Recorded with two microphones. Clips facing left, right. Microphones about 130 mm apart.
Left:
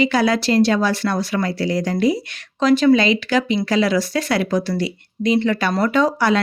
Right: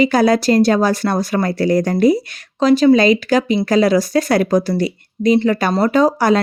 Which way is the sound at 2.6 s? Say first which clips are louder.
Right 3 dB; 35° right (ahead or behind).